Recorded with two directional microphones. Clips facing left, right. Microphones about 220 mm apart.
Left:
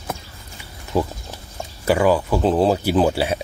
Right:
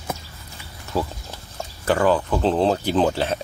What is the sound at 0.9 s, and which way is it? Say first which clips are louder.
Speech: left 4 dB; 15° left (ahead or behind).